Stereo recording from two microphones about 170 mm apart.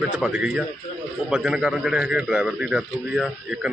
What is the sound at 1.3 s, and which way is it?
A man's voice, 5° right (ahead or behind).